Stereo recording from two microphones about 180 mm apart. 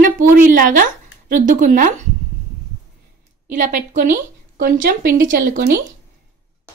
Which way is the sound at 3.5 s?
45° right (ahead or behind).